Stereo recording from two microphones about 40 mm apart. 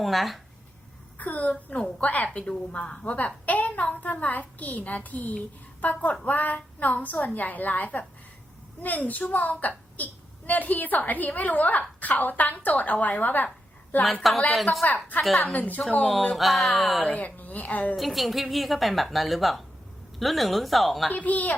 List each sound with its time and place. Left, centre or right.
0.0 s a woman's voice: centre
1.2 s a woman's voice: left
2.7 s a woman's voice: left
14.0 s a woman's voice: centre
14.8 s a woman's voice: left
16.3 s a woman's voice: centre
17.1 s a woman's voice: left
17.9 s a woman's voice: centre
21.1 s a woman's voice: left